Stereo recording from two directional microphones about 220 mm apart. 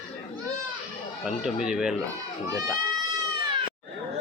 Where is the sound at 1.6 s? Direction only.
5° right (ahead or behind).